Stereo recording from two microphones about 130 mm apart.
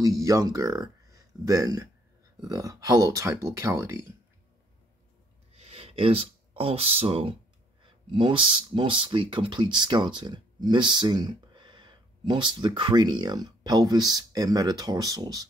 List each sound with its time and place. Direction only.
0.0 s speech: 25° right (ahead or behind)
5.5 s a sound: 50° right (ahead or behind)
7.8 s speech: 40° right (ahead or behind)